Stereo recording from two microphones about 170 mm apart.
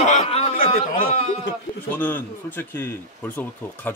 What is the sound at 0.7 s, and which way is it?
Speech, 35° left (ahead or behind).